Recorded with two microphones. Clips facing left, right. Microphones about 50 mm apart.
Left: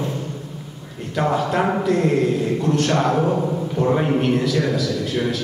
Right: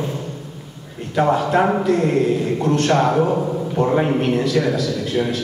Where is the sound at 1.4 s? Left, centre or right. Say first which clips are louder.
Right 3 dB; right.